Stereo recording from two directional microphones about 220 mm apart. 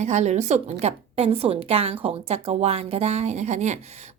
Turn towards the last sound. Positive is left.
turn(degrees=-30)  # may be behind; listen again after turning